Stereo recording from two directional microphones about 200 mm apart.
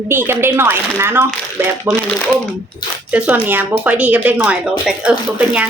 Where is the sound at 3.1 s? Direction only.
5° right (ahead or behind).